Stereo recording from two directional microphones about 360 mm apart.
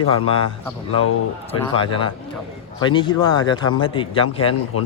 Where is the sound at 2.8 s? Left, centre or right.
Centre.